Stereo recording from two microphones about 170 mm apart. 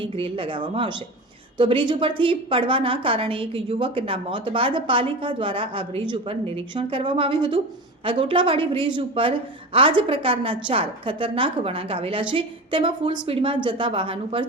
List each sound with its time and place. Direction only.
0.0 s a woman's voice: 30° right (ahead or behind)